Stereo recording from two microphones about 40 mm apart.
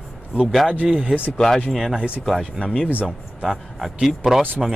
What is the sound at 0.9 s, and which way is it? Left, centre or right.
Speech, centre.